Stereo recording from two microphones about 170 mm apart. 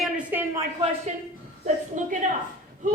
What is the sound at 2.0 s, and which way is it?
Speech, 45° right (ahead or behind).